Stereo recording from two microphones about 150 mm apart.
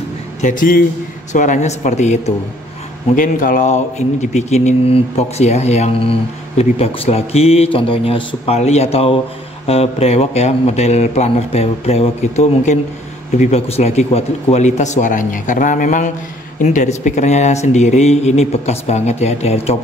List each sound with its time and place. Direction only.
0.4 s speech: 60° left (ahead or behind)
1.3 s speech: 55° left (ahead or behind)
3.2 s speech: 65° left (ahead or behind); by 19.8 s 45° left (ahead or behind)